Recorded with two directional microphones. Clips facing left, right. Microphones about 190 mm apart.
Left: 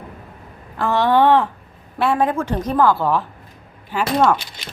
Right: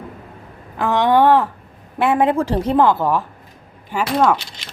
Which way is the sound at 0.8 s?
15° right (ahead or behind).